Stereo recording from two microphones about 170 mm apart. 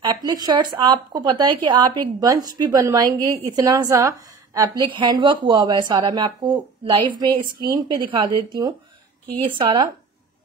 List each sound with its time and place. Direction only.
0.0 s speech: 25° right (ahead or behind)